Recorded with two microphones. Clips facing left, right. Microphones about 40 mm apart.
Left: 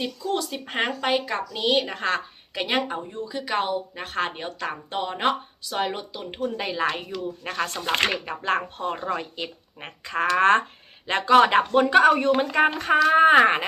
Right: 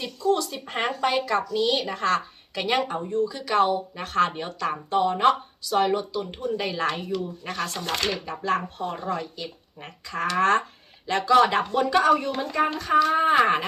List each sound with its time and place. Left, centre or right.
0.0 s speech: left
0.8 s a woman's voice: centre
1.2 s speech: left
4.9 s speech: left
6.6 s speech: centre
7.6 s speech: left